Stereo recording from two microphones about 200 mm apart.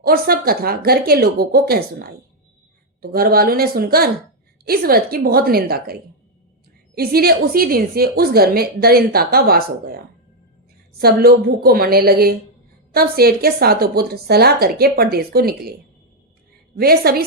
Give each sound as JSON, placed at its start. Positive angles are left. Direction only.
{"t": 0.0, "sound": "a woman's voice", "side_deg": -50}
{"t": 11.0, "sound": "a woman's voice", "side_deg": -50}
{"t": 16.7, "sound": "a woman's voice", "side_deg": -50}